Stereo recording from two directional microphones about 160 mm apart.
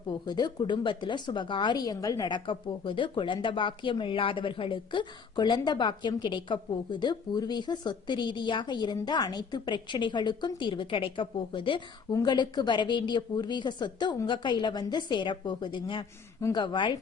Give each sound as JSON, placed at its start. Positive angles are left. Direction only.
{"t": 0.1, "sound": "speech", "side_deg": 25}